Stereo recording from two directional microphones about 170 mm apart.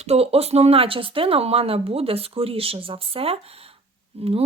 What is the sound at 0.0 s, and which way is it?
Speech, 35° right (ahead or behind).